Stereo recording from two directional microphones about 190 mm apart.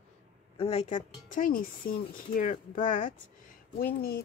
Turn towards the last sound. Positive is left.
turn(degrees=55)  # may be behind; listen again after turning